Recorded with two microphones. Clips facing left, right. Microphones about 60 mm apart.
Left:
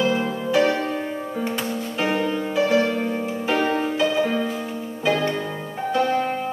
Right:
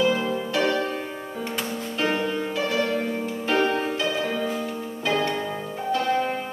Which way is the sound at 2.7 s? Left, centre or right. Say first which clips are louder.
Left 4 dB; left.